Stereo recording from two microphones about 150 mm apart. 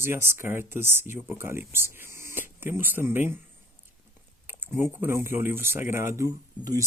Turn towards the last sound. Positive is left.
turn(degrees=-25)  # may be behind; listen again after turning